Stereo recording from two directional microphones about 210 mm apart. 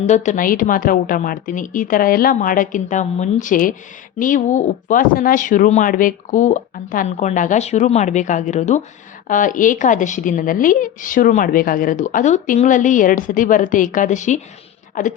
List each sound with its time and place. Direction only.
0.1 s a woman's voice: 35° left (ahead or behind)